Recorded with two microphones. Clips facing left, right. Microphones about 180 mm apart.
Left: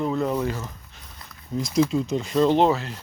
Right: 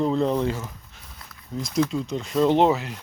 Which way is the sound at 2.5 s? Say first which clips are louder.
Even; 20° right (ahead or behind).